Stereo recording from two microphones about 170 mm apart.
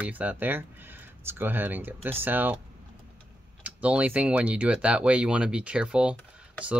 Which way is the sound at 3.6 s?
10° right (ahead or behind).